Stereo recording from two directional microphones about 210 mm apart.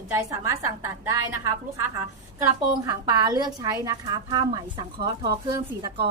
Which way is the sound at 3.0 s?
20° right (ahead or behind).